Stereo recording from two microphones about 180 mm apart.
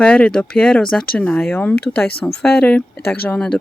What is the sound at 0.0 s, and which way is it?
Speech, 5° left (ahead or behind).